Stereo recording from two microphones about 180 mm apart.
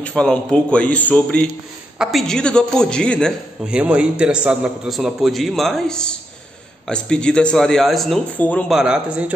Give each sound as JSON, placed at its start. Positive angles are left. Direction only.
{"t": 0.0, "sound": "a man's voice", "side_deg": 5}